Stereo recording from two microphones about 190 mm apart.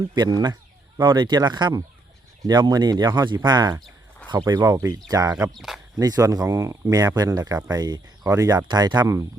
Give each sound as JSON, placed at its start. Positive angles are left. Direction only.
{"t": 0.1, "sound": "speech", "side_deg": -20}
{"t": 5.5, "sound": "speech", "side_deg": 0}
{"t": 6.0, "sound": "speech", "side_deg": -20}